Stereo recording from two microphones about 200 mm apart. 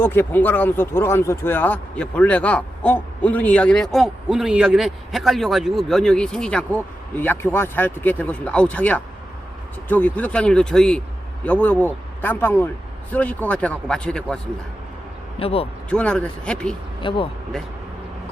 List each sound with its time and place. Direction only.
0.0 s speech: 10° left (ahead or behind)
15.4 s speech: 30° left (ahead or behind)
15.9 s speech: 5° left (ahead or behind)
17.0 s speech: 25° left (ahead or behind)